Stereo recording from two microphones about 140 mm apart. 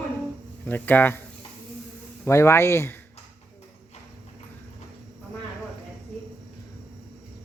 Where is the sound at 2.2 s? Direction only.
20° left (ahead or behind).